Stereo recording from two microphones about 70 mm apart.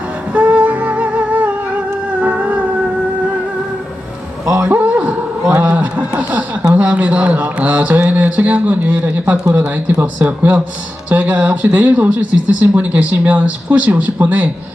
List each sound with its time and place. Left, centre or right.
0.3 s music: right
4.5 s a sound: right
9.5 s speech: right